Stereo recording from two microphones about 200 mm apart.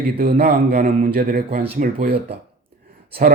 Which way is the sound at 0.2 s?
50° right (ahead or behind).